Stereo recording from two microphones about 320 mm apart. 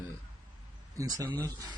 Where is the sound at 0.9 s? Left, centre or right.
Centre.